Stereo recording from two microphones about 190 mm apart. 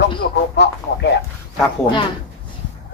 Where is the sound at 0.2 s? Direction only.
65° left (ahead or behind).